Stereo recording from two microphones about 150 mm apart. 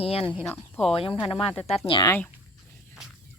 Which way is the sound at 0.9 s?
40° left (ahead or behind).